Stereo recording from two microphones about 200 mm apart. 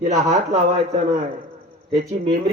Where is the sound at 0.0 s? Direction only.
35° right (ahead or behind).